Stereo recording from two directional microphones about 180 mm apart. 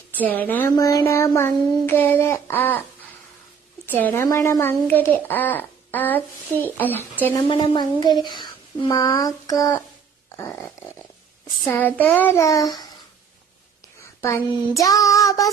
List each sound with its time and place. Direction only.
0.2 s speech: 10° left (ahead or behind)
3.8 s speech: 10° left (ahead or behind)
7.4 s speech: 25° left (ahead or behind)
14.2 s speech: 15° left (ahead or behind)